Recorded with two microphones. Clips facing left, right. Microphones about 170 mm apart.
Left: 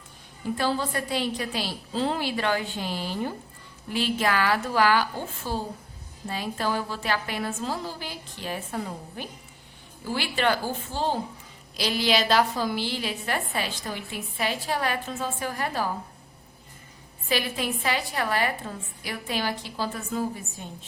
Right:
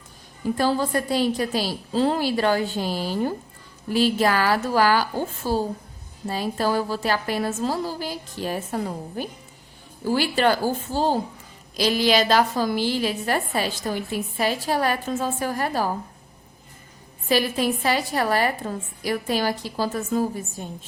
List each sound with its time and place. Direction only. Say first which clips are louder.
0.5 s a woman's voice: right 5 dB; 40° right (ahead or behind)
17.2 s a woman's voice: right 6 dB; 40° right (ahead or behind)